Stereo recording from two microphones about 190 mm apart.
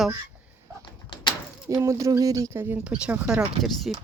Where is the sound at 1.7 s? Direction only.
15° right (ahead or behind); by 4.0 s centre (ahead or behind).